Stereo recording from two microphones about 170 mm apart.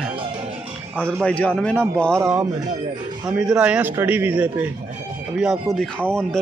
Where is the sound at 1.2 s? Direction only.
5° left (ahead or behind).